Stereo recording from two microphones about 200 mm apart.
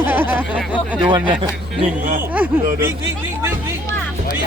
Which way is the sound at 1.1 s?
25° right (ahead or behind).